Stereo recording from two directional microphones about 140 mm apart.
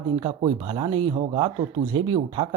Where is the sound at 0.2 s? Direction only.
40° right (ahead or behind).